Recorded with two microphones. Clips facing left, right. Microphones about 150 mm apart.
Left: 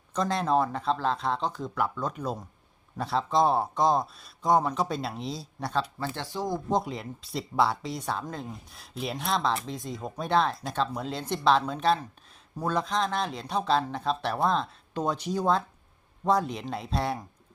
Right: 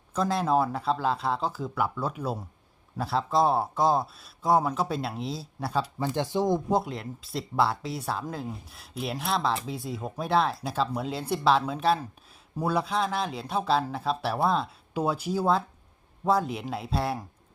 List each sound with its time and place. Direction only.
0.1 s speech: 5° right (ahead or behind)
6.1 s speech: 20° right (ahead or behind)
6.7 s speech: 5° right (ahead or behind)